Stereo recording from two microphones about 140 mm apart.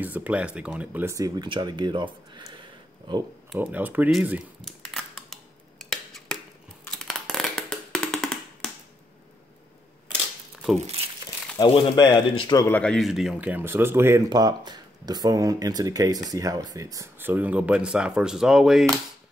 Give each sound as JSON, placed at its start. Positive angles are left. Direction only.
{"t": 0.0, "sound": "speech", "side_deg": -10}
{"t": 3.6, "sound": "speech", "side_deg": -10}
{"t": 4.1, "sound": "dishes", "side_deg": -10}
{"t": 6.9, "sound": "a sound", "side_deg": 0}
{"t": 11.5, "sound": "speech", "side_deg": 30}
{"t": 12.6, "sound": "speech", "side_deg": 10}
{"t": 14.3, "sound": "speech", "side_deg": -30}